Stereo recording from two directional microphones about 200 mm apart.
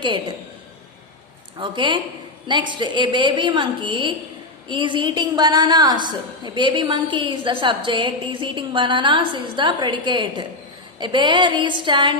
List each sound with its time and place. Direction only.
0.0 s a woman's voice: 25° right (ahead or behind)
1.5 s a woman's voice: 25° right (ahead or behind)